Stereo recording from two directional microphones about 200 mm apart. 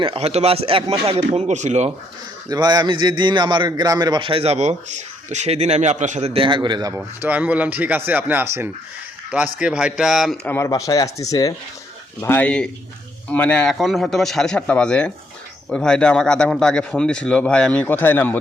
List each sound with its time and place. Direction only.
0.0 s speech: 30° right (ahead or behind)
2.5 s a man's voice: 20° right (ahead or behind)
6.9 s speech: 10° right (ahead or behind)
10.5 s speech: 15° left (ahead or behind)